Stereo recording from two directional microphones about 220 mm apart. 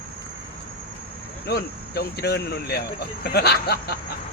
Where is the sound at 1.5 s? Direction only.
45° left (ahead or behind).